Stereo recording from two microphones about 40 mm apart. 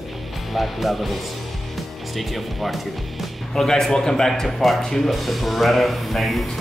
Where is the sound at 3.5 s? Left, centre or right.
Centre.